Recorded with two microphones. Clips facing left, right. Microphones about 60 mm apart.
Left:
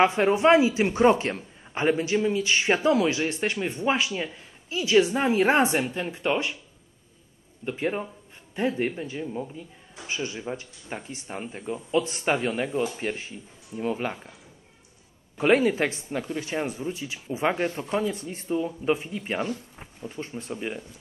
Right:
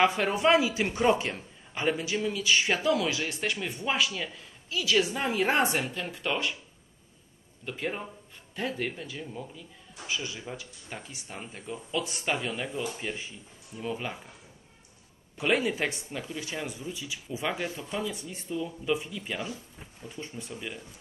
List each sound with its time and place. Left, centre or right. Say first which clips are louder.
0.0 s a man's voice: left 4 dB; left
5.9 s a man's voice: left 5 dB; centre
7.6 s speech: left 6 dB; centre
8.5 s a man's voice: left 6 dB; left
15.3 s speech: left 6 dB; left